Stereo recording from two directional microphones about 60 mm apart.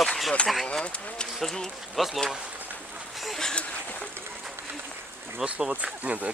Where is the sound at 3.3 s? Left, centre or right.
Centre.